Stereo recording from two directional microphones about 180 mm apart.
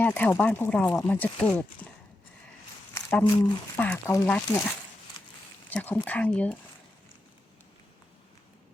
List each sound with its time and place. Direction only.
0.0 s speech: 10° left (ahead or behind)
2.9 s speech: 10° left (ahead or behind)
5.2 s a sound: 25° left (ahead or behind)
5.6 s speech: 10° left (ahead or behind)